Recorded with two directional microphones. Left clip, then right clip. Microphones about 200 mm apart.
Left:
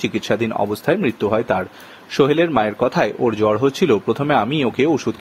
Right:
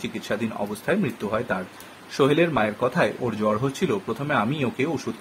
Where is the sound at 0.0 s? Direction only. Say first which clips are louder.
Left 8 dB; 40° left (ahead or behind).